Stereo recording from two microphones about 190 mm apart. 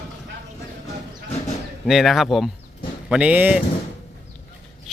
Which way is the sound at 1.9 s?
Centre (ahead or behind).